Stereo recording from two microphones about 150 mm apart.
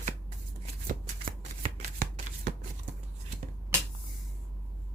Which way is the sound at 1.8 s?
70° right (ahead or behind).